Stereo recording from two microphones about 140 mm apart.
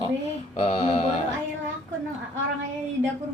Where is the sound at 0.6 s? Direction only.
45° left (ahead or behind).